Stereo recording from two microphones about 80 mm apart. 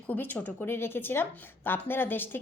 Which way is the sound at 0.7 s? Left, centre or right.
Left.